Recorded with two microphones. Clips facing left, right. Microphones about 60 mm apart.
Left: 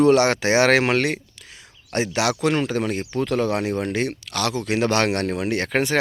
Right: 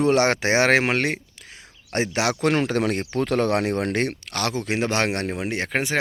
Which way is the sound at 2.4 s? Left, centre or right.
Right.